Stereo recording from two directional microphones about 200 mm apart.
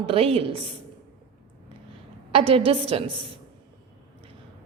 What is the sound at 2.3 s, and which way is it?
Speech, 30° right (ahead or behind).